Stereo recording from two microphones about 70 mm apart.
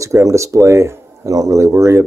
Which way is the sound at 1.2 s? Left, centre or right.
Right.